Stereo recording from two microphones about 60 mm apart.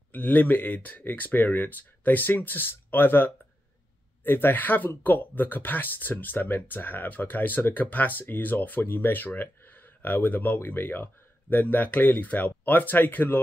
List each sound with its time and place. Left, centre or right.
0.1 s speech: left